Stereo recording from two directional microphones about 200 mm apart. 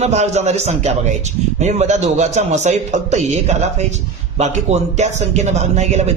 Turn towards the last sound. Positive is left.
turn(degrees=-35)  # may be behind; listen again after turning